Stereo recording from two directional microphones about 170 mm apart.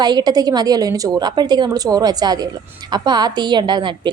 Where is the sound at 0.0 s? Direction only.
25° right (ahead or behind).